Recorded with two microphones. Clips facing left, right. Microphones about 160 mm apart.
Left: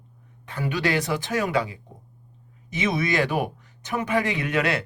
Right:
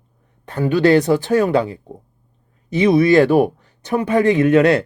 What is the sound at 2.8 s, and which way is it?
Speech, 35° right (ahead or behind).